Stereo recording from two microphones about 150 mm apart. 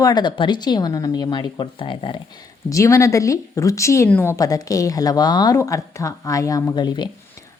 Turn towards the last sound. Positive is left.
turn(degrees=30)  # may be behind; listen again after turning